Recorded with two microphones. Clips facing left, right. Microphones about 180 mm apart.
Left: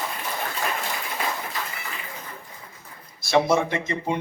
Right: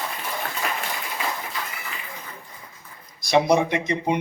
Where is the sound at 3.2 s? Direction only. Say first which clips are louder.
Right 2 dB; 20° right (ahead or behind).